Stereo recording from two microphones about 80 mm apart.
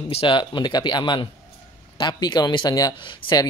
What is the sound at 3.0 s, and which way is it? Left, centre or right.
Speech, left.